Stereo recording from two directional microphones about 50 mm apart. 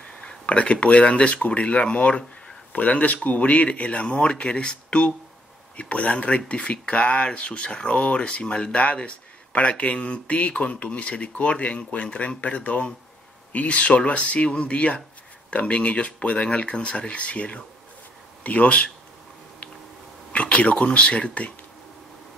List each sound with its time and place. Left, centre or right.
0.0 s speech: left
20.3 s speech: left